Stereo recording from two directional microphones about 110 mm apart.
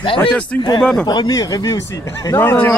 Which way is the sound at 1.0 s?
40° left (ahead or behind).